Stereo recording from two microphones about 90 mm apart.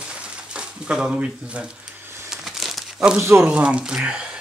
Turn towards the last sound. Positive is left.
turn(degrees=-10)  # may be behind; listen again after turning